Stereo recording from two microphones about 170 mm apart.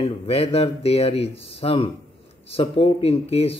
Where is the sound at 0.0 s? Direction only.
35° left (ahead or behind).